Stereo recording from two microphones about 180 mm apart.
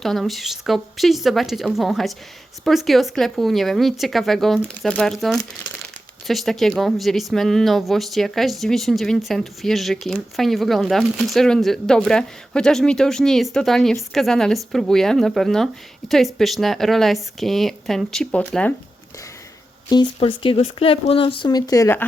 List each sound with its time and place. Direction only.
0.0 s speech: centre (ahead or behind)
20.1 s speech: 30° left (ahead or behind)